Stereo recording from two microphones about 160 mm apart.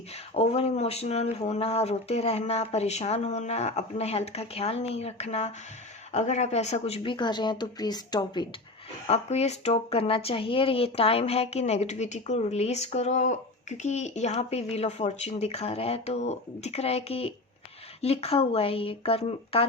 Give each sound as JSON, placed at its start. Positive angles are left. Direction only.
{"t": 0.1, "sound": "speech", "side_deg": 40}
{"t": 9.0, "sound": "speech", "side_deg": 40}